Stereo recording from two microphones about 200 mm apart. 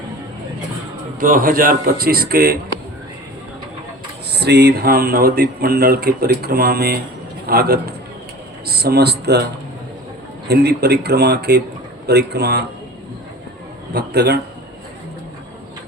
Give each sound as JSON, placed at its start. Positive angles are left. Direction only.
{"t": 1.2, "sound": "speech", "side_deg": -45}
{"t": 4.3, "sound": "a man's voice", "side_deg": -55}
{"t": 10.5, "sound": "speech", "side_deg": -55}
{"t": 13.9, "sound": "speech", "side_deg": -55}